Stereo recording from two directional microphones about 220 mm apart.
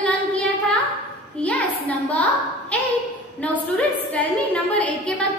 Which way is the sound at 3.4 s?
5° left (ahead or behind).